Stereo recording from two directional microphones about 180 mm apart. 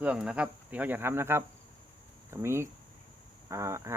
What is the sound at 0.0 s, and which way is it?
Speech, 5° right (ahead or behind).